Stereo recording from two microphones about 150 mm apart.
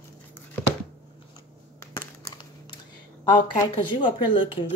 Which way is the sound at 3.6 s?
30° left (ahead or behind).